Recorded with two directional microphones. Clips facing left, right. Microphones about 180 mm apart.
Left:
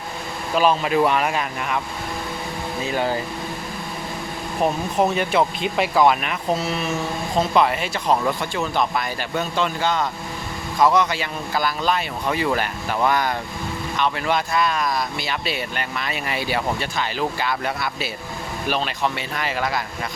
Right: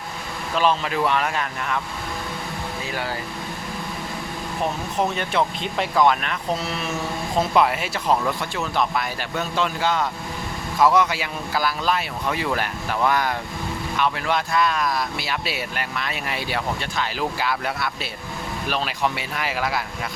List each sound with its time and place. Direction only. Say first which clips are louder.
0.5 s speech: left 3 dB; 10° left (ahead or behind)
2.9 s speech: left 7 dB; 25° left (ahead or behind)
4.6 s speech: left 4 dB; 10° left (ahead or behind); by 19.8 s 5° right (ahead or behind)